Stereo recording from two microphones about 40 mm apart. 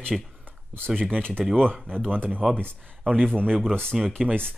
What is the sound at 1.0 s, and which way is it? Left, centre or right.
Speech, left.